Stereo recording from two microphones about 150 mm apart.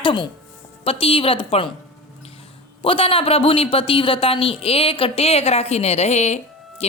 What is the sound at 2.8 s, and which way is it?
A man's voice, 40° left (ahead or behind).